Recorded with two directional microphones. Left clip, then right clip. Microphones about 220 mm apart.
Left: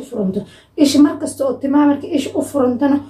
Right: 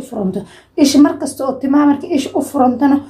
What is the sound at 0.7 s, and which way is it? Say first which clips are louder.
A woman's voice: right 2 dB; 40° right (ahead or behind).